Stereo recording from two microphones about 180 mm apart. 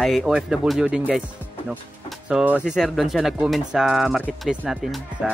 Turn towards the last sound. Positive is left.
turn(degrees=0)  # may be behind; listen again after turning